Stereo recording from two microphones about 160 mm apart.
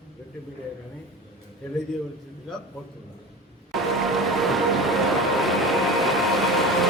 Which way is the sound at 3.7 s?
Centre (ahead or behind).